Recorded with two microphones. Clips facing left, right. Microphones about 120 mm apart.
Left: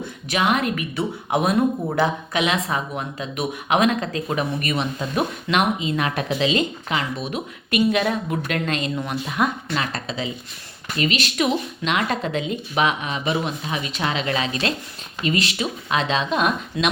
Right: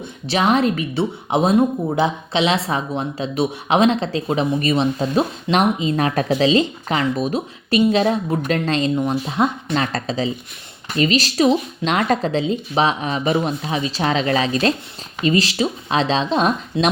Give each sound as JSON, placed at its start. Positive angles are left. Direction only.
{"t": 0.0, "sound": "a woman's voice", "side_deg": -30}
{"t": 9.7, "sound": "a woman's voice", "side_deg": -40}